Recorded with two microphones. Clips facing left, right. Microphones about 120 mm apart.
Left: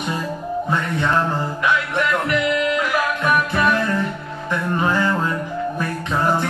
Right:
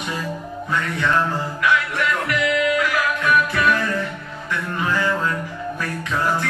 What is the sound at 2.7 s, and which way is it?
Music, 25° left (ahead or behind).